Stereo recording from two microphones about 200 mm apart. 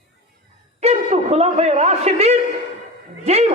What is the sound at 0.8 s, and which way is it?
A man's voice, 30° right (ahead or behind).